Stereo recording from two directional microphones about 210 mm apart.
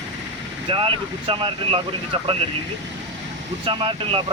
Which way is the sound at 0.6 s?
25° right (ahead or behind).